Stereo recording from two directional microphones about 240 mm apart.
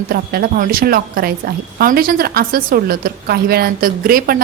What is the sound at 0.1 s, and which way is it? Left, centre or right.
A woman's voice, right.